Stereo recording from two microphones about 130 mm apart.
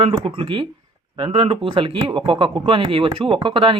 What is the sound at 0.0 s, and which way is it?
Speech, 40° right (ahead or behind).